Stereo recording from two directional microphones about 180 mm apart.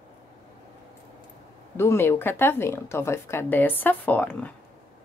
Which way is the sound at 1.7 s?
15° left (ahead or behind).